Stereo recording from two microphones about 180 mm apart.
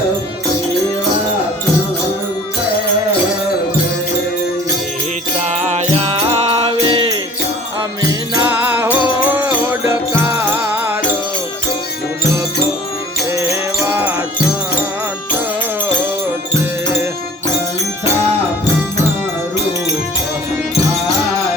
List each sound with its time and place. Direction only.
5.5 s music: 40° right (ahead or behind)
6.7 s music: 25° right (ahead or behind)
8.4 s music: 10° right (ahead or behind)
13.3 s music: 15° right (ahead or behind)